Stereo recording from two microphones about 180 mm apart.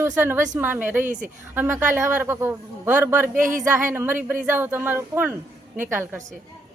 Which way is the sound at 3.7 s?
10° right (ahead or behind).